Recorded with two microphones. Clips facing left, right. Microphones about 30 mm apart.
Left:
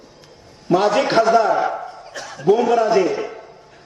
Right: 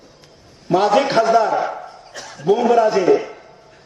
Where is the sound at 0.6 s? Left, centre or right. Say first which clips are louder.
Right 1 dB; centre.